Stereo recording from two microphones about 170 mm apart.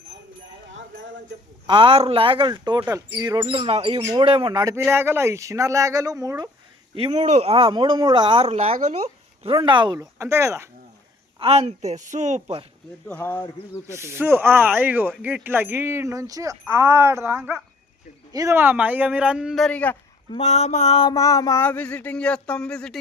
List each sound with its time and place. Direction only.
1.6 s speech: 30° right (ahead or behind)
4.9 s speech: 15° right (ahead or behind)
6.9 s speech: 35° right (ahead or behind); by 10.7 s 15° right (ahead or behind)
11.3 s speech: 35° right (ahead or behind)
13.1 s speech: 10° left (ahead or behind)
13.8 s speech: 15° right (ahead or behind); by 20.0 s 10° left (ahead or behind)
20.3 s mantra: 40° left (ahead or behind)
21.2 s speech: 20° left (ahead or behind); by 23.0 s 5° left (ahead or behind)